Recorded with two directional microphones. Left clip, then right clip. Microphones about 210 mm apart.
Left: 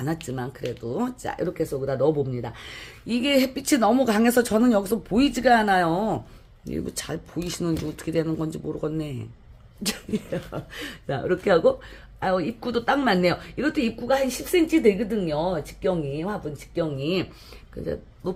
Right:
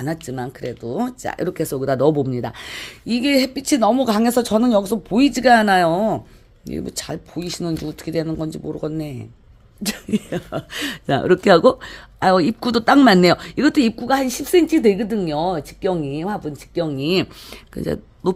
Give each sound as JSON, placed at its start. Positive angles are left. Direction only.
{"t": 0.0, "sound": "speech", "side_deg": -30}
{"t": 3.1, "sound": "speech", "side_deg": -30}
{"t": 5.4, "sound": "a woman's voice", "side_deg": -35}
{"t": 6.7, "sound": "speech", "side_deg": -25}
{"t": 10.1, "sound": "speech", "side_deg": -50}